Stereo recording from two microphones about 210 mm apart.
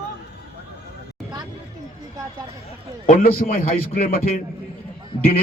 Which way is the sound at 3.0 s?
40° left (ahead or behind).